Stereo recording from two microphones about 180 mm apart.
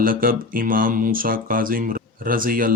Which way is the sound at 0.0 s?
55° right (ahead or behind).